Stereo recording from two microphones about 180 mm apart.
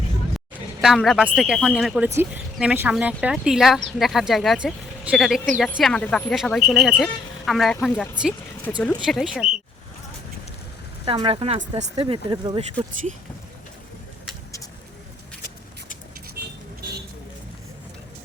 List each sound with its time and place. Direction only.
0.3 s speech: centre (ahead or behind)
11.0 s speech: 30° right (ahead or behind)
16.4 s vehicle: 55° right (ahead or behind)